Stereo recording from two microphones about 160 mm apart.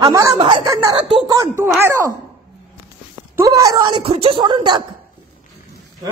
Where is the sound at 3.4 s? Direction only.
20° right (ahead or behind).